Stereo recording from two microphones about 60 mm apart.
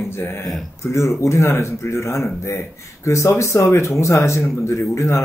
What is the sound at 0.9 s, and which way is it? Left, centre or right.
Speech, left.